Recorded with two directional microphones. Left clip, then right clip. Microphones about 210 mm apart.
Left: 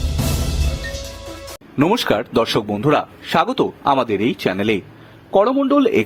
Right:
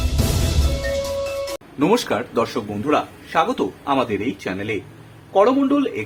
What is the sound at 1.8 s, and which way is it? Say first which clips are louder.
Speech: left 1 dB; 40° left (ahead or behind).